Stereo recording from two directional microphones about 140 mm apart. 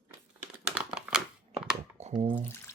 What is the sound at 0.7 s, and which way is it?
Crumpling, 5° right (ahead or behind).